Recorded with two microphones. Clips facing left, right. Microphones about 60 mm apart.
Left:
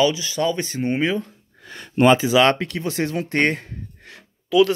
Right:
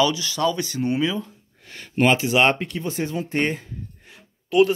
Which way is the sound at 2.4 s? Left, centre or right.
Left.